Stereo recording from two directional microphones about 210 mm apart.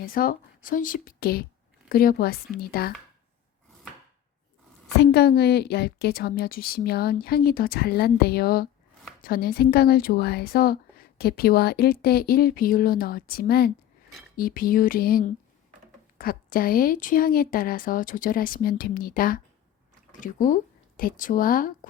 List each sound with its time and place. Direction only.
0.0 s a woman's voice: 45° left (ahead or behind)
5.1 s a woman's voice: 50° left (ahead or behind)